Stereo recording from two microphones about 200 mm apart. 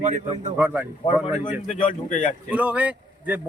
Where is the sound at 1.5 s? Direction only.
40° left (ahead or behind).